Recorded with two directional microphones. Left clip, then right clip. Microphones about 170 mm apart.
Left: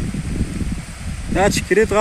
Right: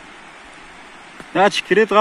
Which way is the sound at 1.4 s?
10° left (ahead or behind).